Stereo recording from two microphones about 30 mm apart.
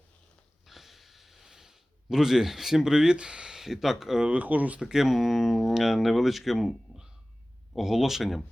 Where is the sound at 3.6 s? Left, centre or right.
Centre.